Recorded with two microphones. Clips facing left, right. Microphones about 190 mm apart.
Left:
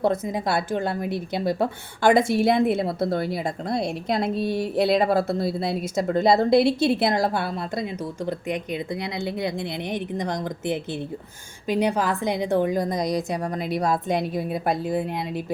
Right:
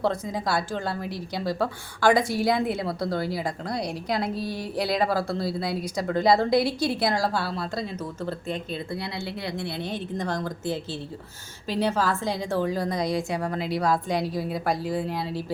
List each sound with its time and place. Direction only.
0.0 s a woman's voice: 20° left (ahead or behind)